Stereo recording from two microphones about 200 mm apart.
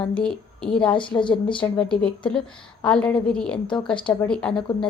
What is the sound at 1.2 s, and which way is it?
Speech, 25° left (ahead or behind).